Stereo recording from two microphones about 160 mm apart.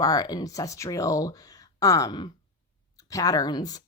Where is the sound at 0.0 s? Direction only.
25° left (ahead or behind).